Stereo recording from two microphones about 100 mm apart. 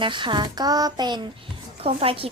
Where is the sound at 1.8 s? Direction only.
70° right (ahead or behind).